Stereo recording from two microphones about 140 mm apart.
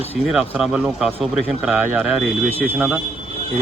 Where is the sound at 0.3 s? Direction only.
5° right (ahead or behind).